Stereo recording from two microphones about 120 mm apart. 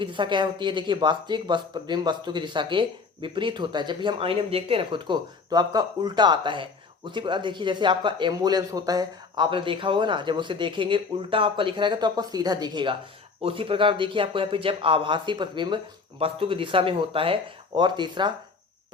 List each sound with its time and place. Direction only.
0.0 s speech: 40° right (ahead or behind)